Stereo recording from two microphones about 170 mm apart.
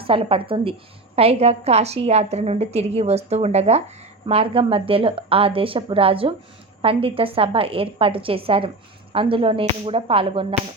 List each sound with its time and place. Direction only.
0.0 s a woman's voice: 30° right (ahead or behind)